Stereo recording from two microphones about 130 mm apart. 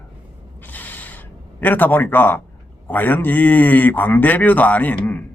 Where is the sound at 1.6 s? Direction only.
15° left (ahead or behind).